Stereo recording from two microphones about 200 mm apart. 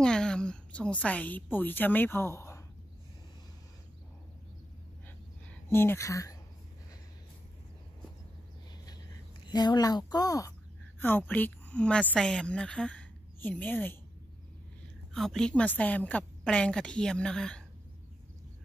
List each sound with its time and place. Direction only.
0.0 s a woman's voice: 5° left (ahead or behind)
5.7 s speech: 10° left (ahead or behind)
9.5 s a woman's voice: 20° left (ahead or behind)
15.1 s a woman's voice: centre (ahead or behind)